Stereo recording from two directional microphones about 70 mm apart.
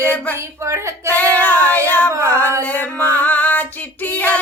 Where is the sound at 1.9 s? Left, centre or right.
Left.